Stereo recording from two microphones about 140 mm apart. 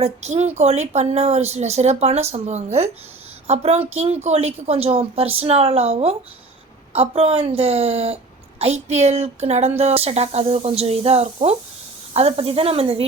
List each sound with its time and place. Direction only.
0.0 s a woman's voice: 50° right (ahead or behind)